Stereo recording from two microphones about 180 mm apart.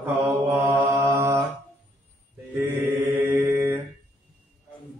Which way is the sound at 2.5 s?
15° right (ahead or behind).